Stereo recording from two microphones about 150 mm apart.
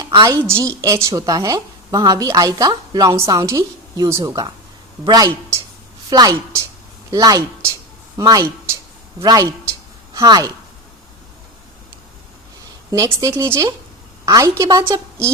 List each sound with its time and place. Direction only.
0.0 s a woman's voice: 20° right (ahead or behind)
12.9 s a woman's voice: 20° right (ahead or behind)